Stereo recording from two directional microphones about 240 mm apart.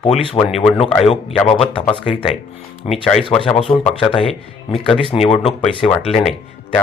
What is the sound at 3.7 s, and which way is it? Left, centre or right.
Speech, left.